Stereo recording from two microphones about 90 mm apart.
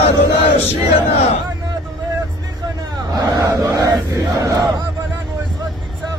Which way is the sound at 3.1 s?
40° right (ahead or behind).